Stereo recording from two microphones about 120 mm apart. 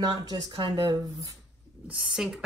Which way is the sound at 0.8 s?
30° right (ahead or behind).